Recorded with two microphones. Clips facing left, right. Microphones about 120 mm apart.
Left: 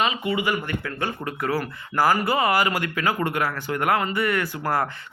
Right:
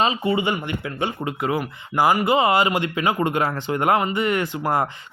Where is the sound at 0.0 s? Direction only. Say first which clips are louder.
Right 3 dB; 30° right (ahead or behind).